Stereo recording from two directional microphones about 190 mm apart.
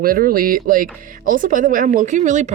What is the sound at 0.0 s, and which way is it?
A woman's voice, 50° right (ahead or behind).